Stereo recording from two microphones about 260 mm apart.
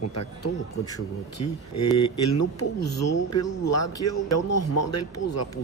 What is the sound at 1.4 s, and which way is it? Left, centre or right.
Speech, left.